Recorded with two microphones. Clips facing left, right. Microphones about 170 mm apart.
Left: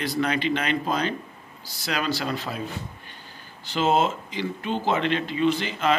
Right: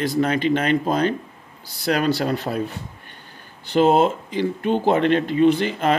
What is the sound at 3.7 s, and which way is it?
Speech, 55° right (ahead or behind).